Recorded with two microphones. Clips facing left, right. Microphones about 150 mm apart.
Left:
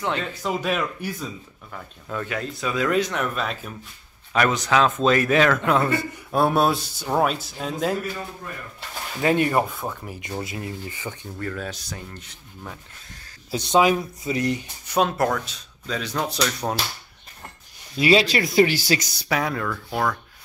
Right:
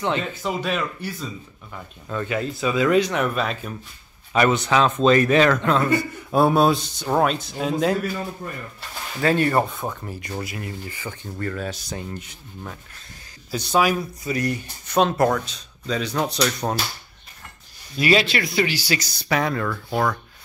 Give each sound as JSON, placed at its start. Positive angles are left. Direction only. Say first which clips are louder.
{"t": 0.0, "sound": "speech", "louder": "right 2 dB", "side_deg": 0}
{"t": 5.8, "sound": "speech", "louder": "right 2 dB", "side_deg": 25}
{"t": 6.3, "sound": "speech", "louder": "right 3 dB", "side_deg": 0}
{"t": 9.2, "sound": "speech", "louder": "right 1 dB", "side_deg": 15}
{"t": 9.7, "sound": "speech", "louder": "right 1 dB", "side_deg": 0}
{"t": 10.0, "sound": "speech", "louder": "even", "side_deg": 10}
{"t": 10.4, "sound": "speech", "louder": "even", "side_deg": 25}
{"t": 11.3, "sound": "speech", "louder": "right 4 dB", "side_deg": 0}
{"t": 13.5, "sound": "speech", "louder": "left 2 dB", "side_deg": 20}
{"t": 17.9, "sound": "speech", "louder": "left 1 dB", "side_deg": 25}
{"t": 18.5, "sound": "speech", "louder": "left 4 dB", "side_deg": 45}
{"t": 19.2, "sound": "speech", "louder": "right 4 dB", "side_deg": 5}